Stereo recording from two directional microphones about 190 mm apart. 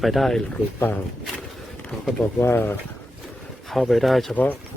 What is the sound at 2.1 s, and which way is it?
Speech, 5° left (ahead or behind).